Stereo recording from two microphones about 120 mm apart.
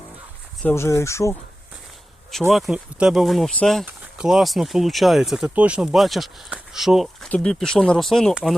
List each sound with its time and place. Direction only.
0.6 s speech: 20° left (ahead or behind)
2.5 s speech: centre (ahead or behind)
3.8 s speech: 10° right (ahead or behind)